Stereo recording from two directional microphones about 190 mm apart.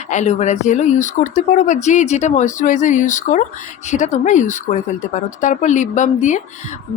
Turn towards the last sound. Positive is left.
turn(degrees=40)  # may be behind; listen again after turning